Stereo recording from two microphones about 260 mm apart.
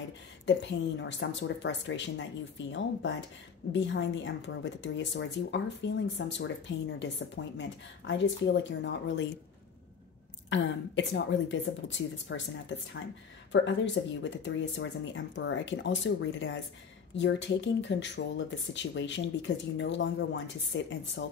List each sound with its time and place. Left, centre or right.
0.5 s speech: left
10.5 s speech: left